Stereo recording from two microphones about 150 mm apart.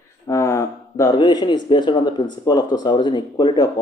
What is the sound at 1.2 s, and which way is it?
Speech, 30° left (ahead or behind).